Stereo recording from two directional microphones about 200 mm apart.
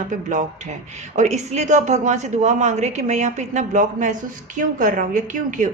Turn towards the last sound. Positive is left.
turn(degrees=-40)  # may be behind; listen again after turning